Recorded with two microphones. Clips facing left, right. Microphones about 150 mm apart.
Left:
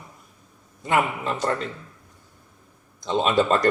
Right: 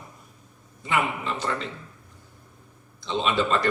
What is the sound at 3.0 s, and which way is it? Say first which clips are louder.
Speech: left 4 dB; 45° left (ahead or behind).